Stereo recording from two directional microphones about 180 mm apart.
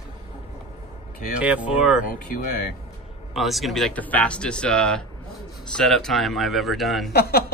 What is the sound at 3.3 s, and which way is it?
Speech, centre (ahead or behind).